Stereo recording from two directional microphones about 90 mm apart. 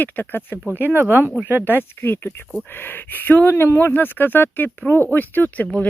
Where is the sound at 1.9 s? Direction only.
25° left (ahead or behind).